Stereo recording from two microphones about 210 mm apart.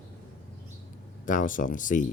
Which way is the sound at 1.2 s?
40° left (ahead or behind).